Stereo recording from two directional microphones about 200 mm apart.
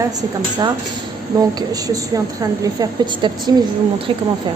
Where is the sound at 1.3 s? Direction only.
20° right (ahead or behind).